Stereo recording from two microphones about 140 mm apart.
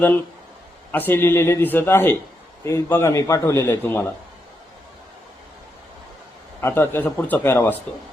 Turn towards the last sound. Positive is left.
turn(degrees=15)  # may be behind; listen again after turning